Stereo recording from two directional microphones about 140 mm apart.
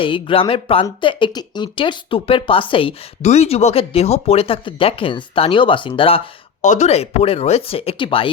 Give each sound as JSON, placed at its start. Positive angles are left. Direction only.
{"t": 0.0, "sound": "speech", "side_deg": 40}
{"t": 3.2, "sound": "speech", "side_deg": 50}
{"t": 6.6, "sound": "speech", "side_deg": 55}